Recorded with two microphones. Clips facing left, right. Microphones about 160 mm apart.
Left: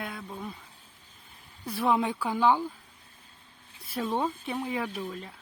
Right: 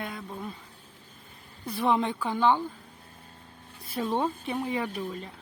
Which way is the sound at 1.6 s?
Centre (ahead or behind).